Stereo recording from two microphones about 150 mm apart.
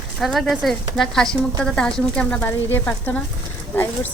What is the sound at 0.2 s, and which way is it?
A woman's voice, centre (ahead or behind).